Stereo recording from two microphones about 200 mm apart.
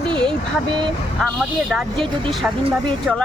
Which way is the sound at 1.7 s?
Centre (ahead or behind).